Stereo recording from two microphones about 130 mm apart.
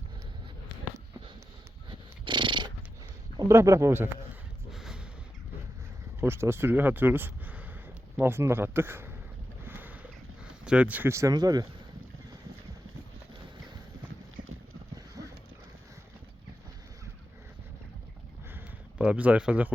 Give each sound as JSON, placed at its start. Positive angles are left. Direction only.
{"t": 1.9, "sound": "cat", "side_deg": -40}
{"t": 3.5, "sound": "speech", "side_deg": -20}
{"t": 4.7, "sound": "a sound", "side_deg": 0}
{"t": 6.1, "sound": "speech", "side_deg": -20}
{"t": 9.6, "sound": "boat", "side_deg": -15}
{"t": 10.7, "sound": "speech", "side_deg": -10}
{"t": 15.2, "sound": "horse", "side_deg": -25}
{"t": 18.5, "sound": "a sound", "side_deg": -10}